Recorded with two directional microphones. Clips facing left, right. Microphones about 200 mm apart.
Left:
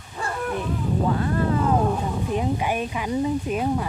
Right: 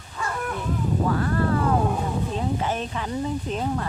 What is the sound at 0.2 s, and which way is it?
Dog, 35° left (ahead or behind).